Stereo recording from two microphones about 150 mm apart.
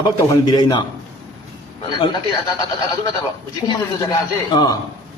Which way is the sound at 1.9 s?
30° left (ahead or behind).